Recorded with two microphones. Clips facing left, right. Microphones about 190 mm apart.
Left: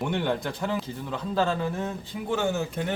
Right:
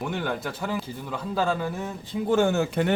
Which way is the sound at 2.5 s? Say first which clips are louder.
Right 5 dB; 70° right (ahead or behind).